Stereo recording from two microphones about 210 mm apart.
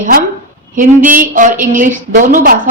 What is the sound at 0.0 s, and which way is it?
A woman's voice, 40° right (ahead or behind).